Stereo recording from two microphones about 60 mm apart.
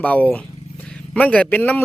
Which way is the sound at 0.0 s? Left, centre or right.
Left.